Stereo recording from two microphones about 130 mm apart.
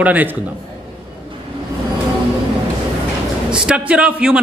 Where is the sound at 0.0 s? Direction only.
15° right (ahead or behind).